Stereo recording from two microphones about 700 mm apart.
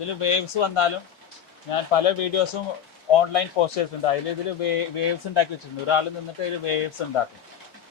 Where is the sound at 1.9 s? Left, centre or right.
Left.